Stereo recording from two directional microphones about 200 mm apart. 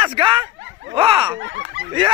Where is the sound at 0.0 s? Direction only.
25° right (ahead or behind).